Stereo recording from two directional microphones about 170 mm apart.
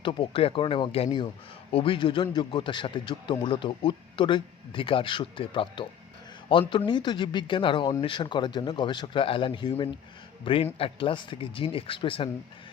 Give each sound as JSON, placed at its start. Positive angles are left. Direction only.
{"t": 0.0, "sound": "speech", "side_deg": 30}